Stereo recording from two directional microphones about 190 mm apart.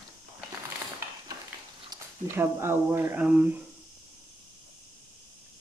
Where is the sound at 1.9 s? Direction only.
15° right (ahead or behind).